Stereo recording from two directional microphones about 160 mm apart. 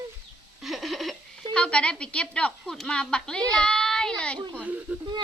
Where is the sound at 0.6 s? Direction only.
Centre (ahead or behind).